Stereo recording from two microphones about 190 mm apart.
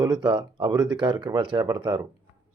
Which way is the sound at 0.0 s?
25° right (ahead or behind).